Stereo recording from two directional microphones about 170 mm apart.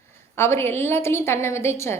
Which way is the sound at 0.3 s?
15° left (ahead or behind).